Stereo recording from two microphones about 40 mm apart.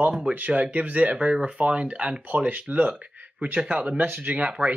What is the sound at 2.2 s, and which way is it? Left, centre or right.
Speech, right.